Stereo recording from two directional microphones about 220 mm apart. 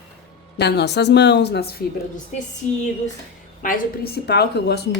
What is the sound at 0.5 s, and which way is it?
A woman's voice, 50° left (ahead or behind).